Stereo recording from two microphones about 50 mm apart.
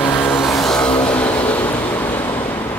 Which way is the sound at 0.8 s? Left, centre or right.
Left.